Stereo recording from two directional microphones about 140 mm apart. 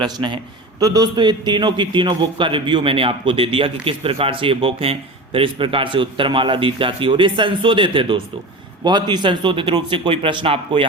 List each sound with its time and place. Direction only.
0.0 s a man's voice: 35° right (ahead or behind)